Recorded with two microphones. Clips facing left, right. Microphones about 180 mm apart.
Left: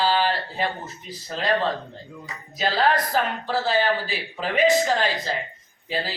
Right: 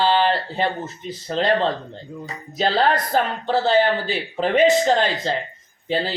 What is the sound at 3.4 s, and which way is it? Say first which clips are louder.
Music: right 7 dB; 25° right (ahead or behind).